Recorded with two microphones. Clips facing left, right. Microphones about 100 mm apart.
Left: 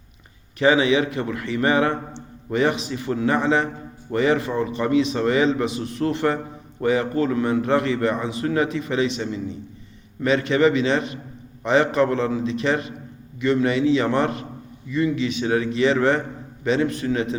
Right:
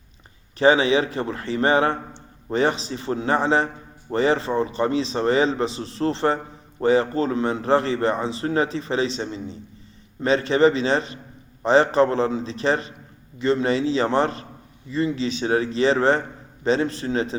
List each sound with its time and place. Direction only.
0.6 s a man's voice: 30° right (ahead or behind)